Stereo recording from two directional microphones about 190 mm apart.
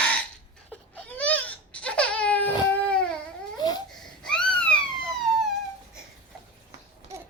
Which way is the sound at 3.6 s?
20° left (ahead or behind).